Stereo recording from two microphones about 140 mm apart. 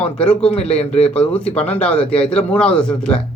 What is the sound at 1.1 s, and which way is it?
A man's voice, 10° left (ahead or behind).